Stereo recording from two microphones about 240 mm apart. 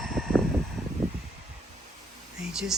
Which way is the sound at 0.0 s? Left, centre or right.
Centre.